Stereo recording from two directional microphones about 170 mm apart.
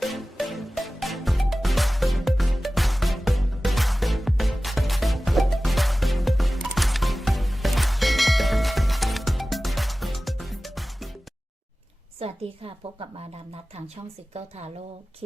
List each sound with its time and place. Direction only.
0.0 s music: centre (ahead or behind)
12.2 s a woman's voice: 35° right (ahead or behind)